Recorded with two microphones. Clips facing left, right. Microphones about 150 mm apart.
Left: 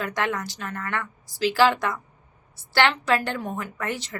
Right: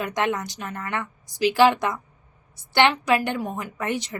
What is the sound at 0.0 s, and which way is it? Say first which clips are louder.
A woman's voice: right 2 dB; 20° right (ahead or behind).